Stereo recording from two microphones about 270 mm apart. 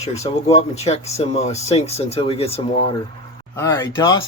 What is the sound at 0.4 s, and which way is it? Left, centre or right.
Speech, left.